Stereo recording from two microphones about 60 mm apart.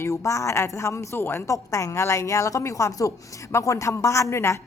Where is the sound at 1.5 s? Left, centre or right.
Left.